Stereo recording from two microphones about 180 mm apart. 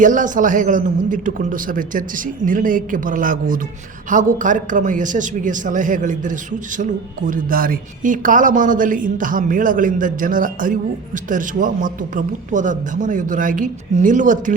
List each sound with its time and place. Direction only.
0.0 s a man's voice: 45° right (ahead or behind)